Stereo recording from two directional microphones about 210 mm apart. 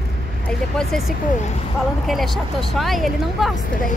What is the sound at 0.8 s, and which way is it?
Speech, centre (ahead or behind).